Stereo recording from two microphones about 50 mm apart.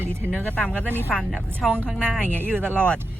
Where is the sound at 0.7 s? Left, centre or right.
Right.